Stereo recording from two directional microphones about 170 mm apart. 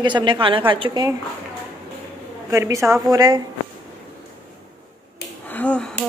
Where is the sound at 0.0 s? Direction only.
30° right (ahead or behind).